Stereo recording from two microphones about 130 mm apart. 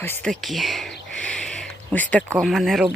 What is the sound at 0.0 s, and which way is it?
Speech, 15° left (ahead or behind).